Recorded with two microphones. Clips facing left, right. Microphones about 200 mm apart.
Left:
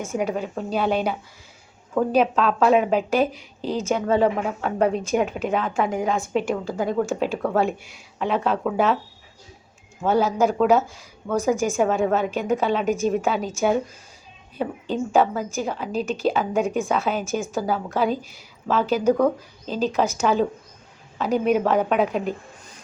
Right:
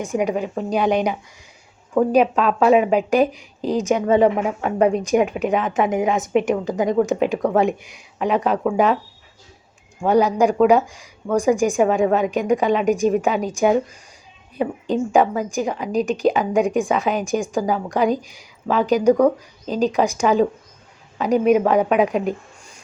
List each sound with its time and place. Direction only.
0.0 s a woman's voice: 15° right (ahead or behind)
3.1 s speech: 15° right (ahead or behind)
4.6 s a woman's voice: centre (ahead or behind)
4.9 s a woman's voice: 10° right (ahead or behind)
10.0 s a woman's voice: 15° right (ahead or behind)